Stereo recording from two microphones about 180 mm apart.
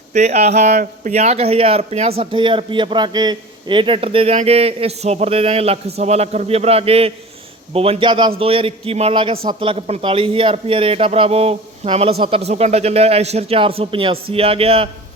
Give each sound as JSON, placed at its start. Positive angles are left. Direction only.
{"t": 0.1, "sound": "speech", "side_deg": -40}